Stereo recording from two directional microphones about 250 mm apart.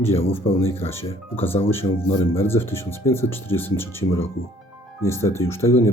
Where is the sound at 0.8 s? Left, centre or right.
Centre.